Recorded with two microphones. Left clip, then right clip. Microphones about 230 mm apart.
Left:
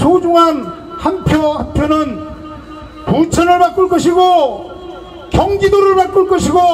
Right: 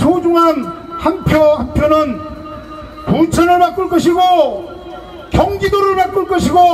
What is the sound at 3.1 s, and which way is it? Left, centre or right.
A man's voice, left.